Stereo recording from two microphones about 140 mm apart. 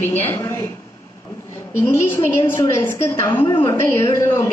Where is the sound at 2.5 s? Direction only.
15° left (ahead or behind).